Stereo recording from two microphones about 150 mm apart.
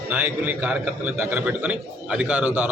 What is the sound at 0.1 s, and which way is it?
A man's voice, 10° right (ahead or behind).